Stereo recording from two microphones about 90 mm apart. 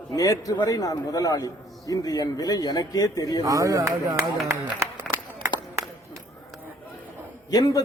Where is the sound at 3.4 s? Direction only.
40° right (ahead or behind).